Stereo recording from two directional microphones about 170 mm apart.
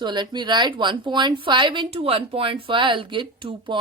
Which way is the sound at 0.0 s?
25° right (ahead or behind).